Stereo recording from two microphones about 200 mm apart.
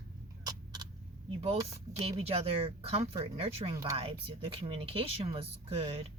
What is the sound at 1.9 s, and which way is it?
Speech, 30° right (ahead or behind).